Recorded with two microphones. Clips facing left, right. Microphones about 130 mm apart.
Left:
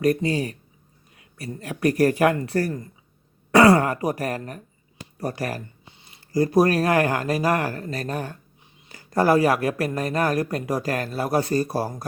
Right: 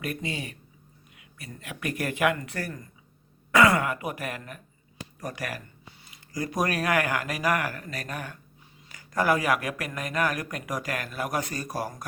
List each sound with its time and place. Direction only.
0.0 s speech: 40° left (ahead or behind)